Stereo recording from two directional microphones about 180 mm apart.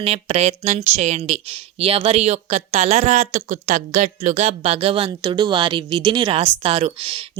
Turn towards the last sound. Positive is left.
turn(degrees=-30)  # may be behind; listen again after turning